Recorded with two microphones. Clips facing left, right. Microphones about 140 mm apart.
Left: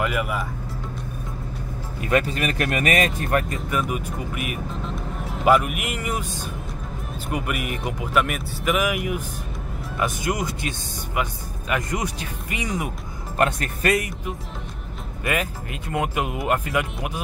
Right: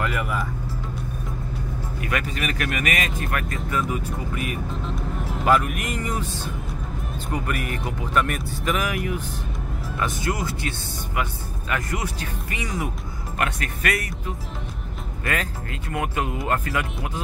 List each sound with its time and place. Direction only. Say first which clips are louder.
0.0 s speech: left 2 dB; 10° left (ahead or behind)
2.0 s speech: left 6 dB; 30° left (ahead or behind)
3.7 s speech: even; 15° left (ahead or behind)
11.7 s speech: left 2 dB; 15° left (ahead or behind)
13.4 s speech: left 5 dB; 35° left (ahead or behind)
15.2 s speech: left 2 dB; 20° left (ahead or behind)